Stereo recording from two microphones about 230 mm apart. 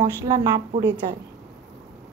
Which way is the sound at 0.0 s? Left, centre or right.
Centre.